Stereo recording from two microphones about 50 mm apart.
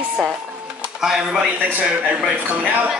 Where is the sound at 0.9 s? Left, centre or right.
Centre.